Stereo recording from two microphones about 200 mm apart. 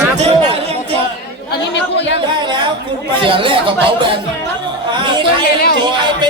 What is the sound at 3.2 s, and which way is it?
Speech, 25° right (ahead or behind).